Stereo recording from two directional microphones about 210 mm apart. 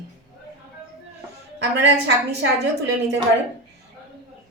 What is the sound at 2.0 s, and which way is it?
Speech, 55° right (ahead or behind).